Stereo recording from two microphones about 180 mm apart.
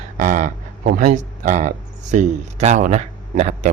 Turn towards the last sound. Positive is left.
turn(degrees=-40)  # may be behind; listen again after turning